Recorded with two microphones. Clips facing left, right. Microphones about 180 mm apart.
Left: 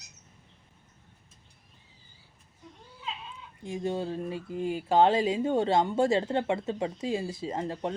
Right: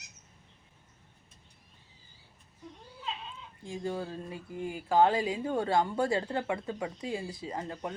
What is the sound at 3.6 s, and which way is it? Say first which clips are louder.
Speech: left 4 dB; 20° left (ahead or behind).